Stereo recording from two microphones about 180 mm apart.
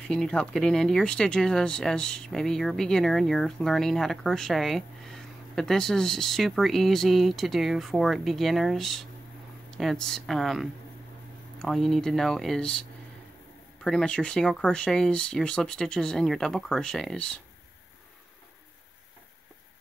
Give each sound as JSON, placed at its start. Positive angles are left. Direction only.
{"t": 0.1, "sound": "speech", "side_deg": 5}
{"t": 13.8, "sound": "speech", "side_deg": 5}